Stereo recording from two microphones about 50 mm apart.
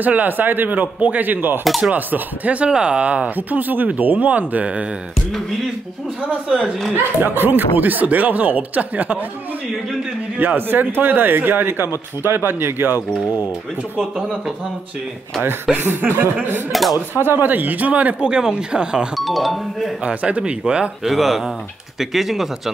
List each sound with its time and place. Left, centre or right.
0.0 s speech: right
2.7 s a man's voice: centre
3.3 s speech: right
7.2 s speech: right
10.3 s speech: right
15.7 s speech: right
16.7 s speech: centre
17.1 s speech: right; by 19.0 s centre
19.1 s speech: centre
20.0 s a man's voice: right
21.0 s speech: centre